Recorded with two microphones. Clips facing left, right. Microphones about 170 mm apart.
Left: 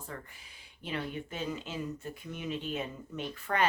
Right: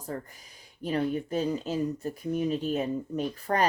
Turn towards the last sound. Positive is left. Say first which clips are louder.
# right 5 dB
turn(degrees=-40)  # may be behind; listen again after turning